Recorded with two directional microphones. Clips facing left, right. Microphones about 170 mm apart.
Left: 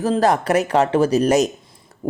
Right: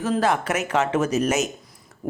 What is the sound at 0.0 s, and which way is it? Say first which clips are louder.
Speech: left 4 dB; 35° left (ahead or behind).